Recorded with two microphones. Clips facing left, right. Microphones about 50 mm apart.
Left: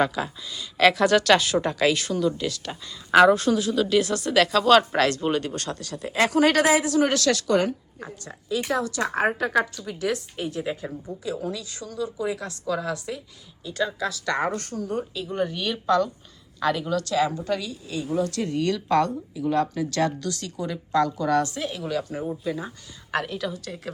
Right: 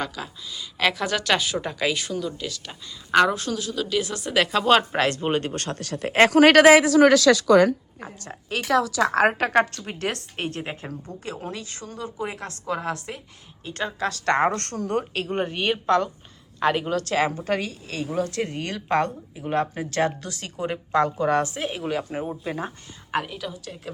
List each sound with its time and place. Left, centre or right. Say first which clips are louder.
0.0 s speech: left 7 dB; centre; by 7.1 s right
8.4 s a woman's voice: right 3 dB; right
9.4 s a woman's voice: right 3 dB; right
10.6 s speech: left 3 dB; right
15.3 s a woman's voice: right 2 dB; right
18.3 s speech: left 3 dB; right
23.1 s a woman's voice: left 1 dB; centre